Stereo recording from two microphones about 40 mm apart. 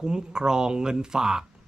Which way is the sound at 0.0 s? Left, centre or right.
Centre.